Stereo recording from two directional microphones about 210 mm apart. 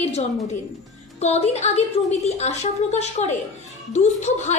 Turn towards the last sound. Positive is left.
turn(degrees=35)  # may be behind; listen again after turning